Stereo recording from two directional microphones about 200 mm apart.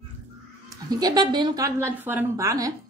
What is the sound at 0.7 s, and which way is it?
A woman's voice, 20° right (ahead or behind).